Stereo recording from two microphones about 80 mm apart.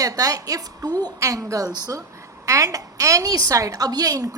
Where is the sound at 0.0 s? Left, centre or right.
Right.